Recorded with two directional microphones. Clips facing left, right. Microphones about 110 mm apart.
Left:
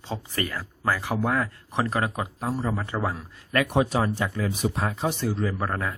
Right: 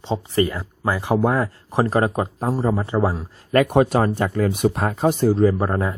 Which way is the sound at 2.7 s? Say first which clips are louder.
Right 7 dB; 25° right (ahead or behind).